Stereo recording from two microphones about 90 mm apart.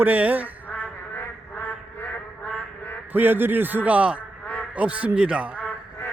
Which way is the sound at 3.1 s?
20° right (ahead or behind).